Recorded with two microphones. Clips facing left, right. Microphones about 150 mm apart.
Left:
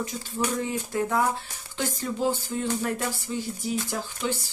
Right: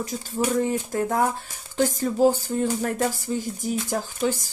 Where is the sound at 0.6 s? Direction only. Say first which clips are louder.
Right 4 dB; 45° right (ahead or behind).